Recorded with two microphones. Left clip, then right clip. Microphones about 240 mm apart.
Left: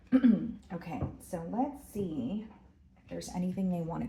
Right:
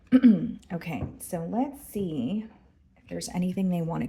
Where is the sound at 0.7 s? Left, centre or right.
Right.